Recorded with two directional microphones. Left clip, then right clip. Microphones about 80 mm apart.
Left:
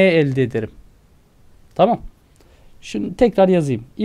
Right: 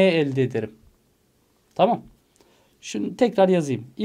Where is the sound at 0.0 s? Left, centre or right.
Left.